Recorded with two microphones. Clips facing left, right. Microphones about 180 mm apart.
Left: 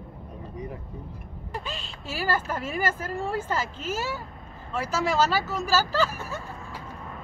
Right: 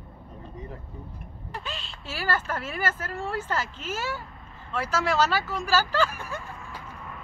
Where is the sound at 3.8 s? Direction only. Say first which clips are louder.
Left 2 dB; 40° left (ahead or behind).